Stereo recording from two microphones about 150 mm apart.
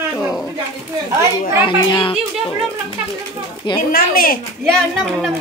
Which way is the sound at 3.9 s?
80° left.